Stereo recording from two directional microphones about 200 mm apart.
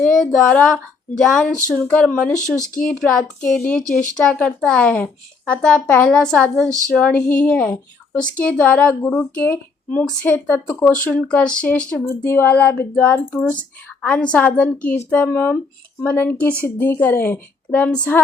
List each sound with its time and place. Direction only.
0.0 s speech: 5° left (ahead or behind)
3.8 s speech: 40° left (ahead or behind)
4.1 s speech: 5° left (ahead or behind)